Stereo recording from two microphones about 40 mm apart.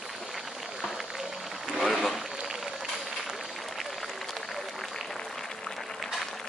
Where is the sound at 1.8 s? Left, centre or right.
Centre.